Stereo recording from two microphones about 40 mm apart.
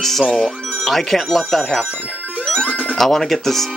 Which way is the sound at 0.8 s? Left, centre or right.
Centre.